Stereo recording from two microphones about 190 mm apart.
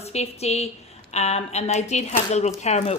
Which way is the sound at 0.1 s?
35° left (ahead or behind).